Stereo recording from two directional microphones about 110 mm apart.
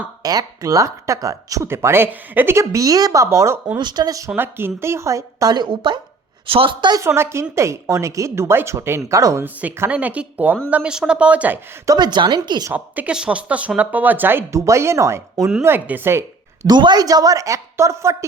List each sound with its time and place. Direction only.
0.2 s speech: 35° right (ahead or behind)
3.8 s a woman's voice: 40° right (ahead or behind)
4.4 s a woman's voice: 20° right (ahead or behind); by 6.9 s 55° right (ahead or behind)
6.9 s speech: 25° right (ahead or behind)
9.4 s speech: 15° right (ahead or behind)
11.9 s a woman's voice: 40° right (ahead or behind)
12.7 s speech: 10° right (ahead or behind)
16.6 s a woman's voice: 40° right (ahead or behind)